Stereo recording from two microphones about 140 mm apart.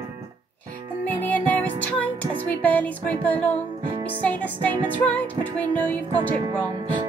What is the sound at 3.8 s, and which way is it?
Music, 35° right (ahead or behind).